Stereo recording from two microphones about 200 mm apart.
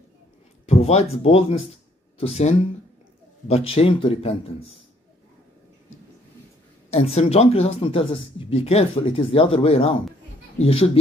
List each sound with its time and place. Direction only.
0.7 s speech: 30° left (ahead or behind)
6.9 s speech: 30° left (ahead or behind)